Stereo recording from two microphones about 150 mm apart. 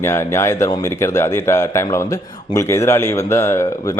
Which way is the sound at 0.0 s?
15° left (ahead or behind).